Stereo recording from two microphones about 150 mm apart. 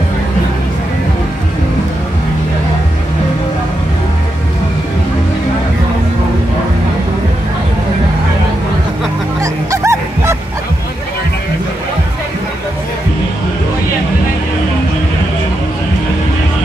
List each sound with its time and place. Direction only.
9.4 s music: 20° right (ahead or behind)